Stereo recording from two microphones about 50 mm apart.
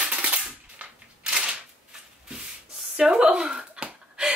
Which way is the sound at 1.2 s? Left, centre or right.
Centre.